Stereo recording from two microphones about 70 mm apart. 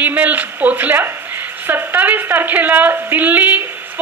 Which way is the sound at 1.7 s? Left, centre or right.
Right.